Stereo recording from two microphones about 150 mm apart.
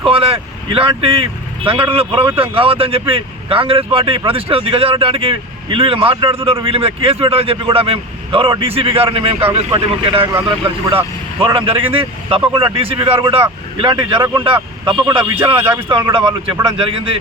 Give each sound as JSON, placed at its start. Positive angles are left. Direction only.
{"t": 0.0, "sound": "speech", "side_deg": -40}
{"t": 9.4, "sound": "speech", "side_deg": -15}
{"t": 10.0, "sound": "speech", "side_deg": -40}
{"t": 15.5, "sound": "speech", "side_deg": -15}
{"t": 15.9, "sound": "speech", "side_deg": -30}